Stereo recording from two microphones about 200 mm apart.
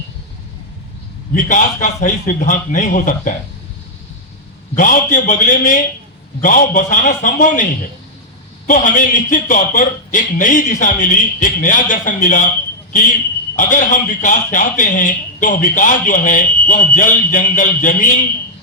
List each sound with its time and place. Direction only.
1.3 s speech: 40° left (ahead or behind)
4.7 s speech: 40° left (ahead or behind)
13.6 s speech: 40° left (ahead or behind)